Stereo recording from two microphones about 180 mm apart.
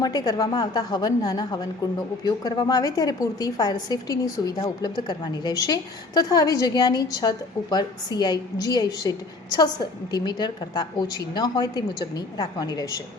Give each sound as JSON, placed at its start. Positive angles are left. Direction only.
{"t": 0.0, "sound": "a woman's voice", "side_deg": 20}